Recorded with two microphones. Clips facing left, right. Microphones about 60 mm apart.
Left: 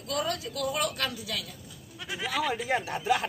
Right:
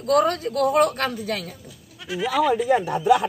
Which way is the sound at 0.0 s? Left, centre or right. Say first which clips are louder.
Right 12 dB; right.